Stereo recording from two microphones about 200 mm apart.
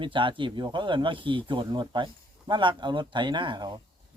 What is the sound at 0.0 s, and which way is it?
Speech, 25° right (ahead or behind).